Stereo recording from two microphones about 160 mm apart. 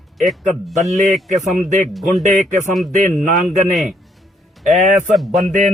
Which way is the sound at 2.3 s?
50° right (ahead or behind).